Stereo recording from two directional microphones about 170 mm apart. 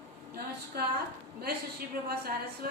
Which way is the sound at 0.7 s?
70° right (ahead or behind).